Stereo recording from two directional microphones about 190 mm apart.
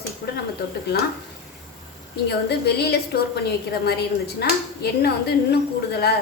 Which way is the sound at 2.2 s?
60° left (ahead or behind).